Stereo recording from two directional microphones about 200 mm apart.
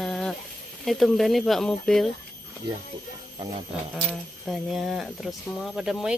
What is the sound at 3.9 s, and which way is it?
Speech, centre (ahead or behind).